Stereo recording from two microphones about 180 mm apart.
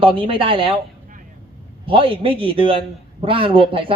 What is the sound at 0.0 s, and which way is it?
Speech, 30° right (ahead or behind).